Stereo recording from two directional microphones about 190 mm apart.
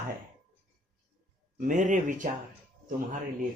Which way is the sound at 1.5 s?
40° right (ahead or behind).